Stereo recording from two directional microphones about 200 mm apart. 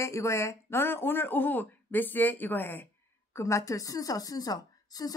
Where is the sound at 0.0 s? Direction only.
15° left (ahead or behind).